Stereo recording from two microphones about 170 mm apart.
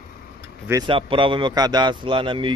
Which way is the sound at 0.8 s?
30° right (ahead or behind).